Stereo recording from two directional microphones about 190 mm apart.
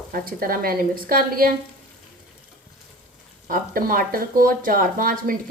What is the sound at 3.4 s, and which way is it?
Speech, 45° right (ahead or behind).